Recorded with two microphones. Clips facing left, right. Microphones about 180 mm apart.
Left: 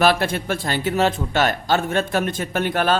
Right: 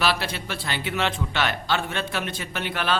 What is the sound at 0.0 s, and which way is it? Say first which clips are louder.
A man's voice: left 7 dB; 50° left (ahead or behind).